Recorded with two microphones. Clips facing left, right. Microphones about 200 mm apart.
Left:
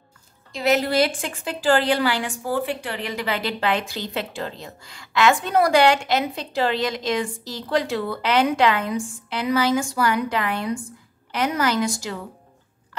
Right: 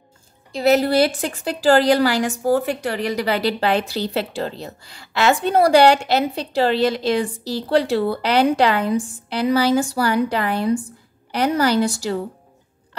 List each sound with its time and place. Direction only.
0.5 s a woman's voice: 35° right (ahead or behind)